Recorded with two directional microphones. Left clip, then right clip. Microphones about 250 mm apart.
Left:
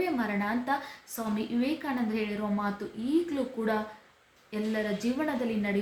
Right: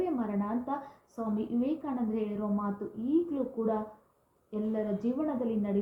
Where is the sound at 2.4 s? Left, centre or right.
Left.